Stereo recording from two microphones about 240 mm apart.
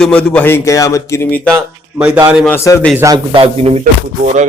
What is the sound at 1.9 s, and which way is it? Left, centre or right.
Speech, centre.